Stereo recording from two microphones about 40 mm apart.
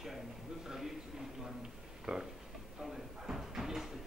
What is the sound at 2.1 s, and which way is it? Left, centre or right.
Speech, centre.